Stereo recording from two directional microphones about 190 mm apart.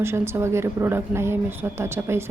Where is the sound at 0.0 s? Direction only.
15° right (ahead or behind).